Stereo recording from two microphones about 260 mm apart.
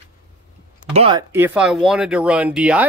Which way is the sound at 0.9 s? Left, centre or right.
Right.